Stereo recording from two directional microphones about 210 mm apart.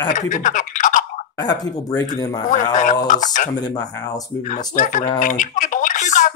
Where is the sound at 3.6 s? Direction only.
20° left (ahead or behind).